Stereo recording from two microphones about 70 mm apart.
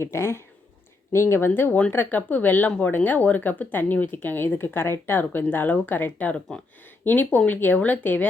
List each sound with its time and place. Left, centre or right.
0.0 s speech: left